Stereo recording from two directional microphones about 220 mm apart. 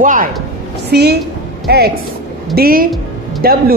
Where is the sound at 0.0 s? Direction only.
35° right (ahead or behind).